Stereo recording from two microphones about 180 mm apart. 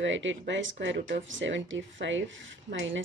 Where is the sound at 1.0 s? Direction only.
80° right.